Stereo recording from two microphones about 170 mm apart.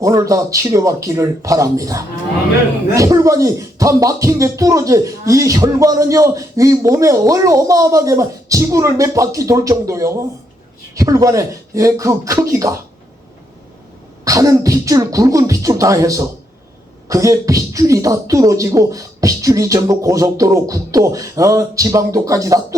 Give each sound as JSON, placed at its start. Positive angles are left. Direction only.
{"t": 0.0, "sound": "speech", "side_deg": -20}
{"t": 14.3, "sound": "speech", "side_deg": -20}